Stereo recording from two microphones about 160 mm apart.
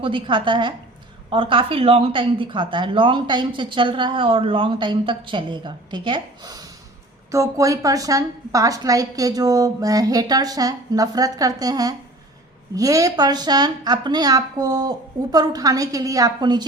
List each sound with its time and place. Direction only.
0.0 s a woman's voice: 30° right (ahead or behind)